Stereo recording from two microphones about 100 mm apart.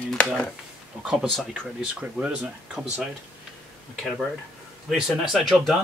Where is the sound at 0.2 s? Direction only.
10° left (ahead or behind).